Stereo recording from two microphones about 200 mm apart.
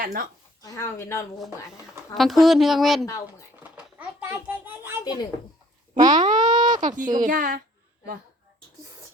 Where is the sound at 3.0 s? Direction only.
15° left (ahead or behind).